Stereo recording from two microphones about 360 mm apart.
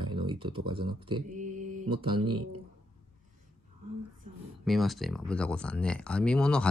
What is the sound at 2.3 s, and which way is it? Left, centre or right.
Speech, right.